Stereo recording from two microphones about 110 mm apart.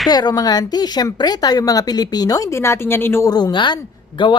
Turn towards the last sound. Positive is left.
turn(degrees=45)  # may be behind; listen again after turning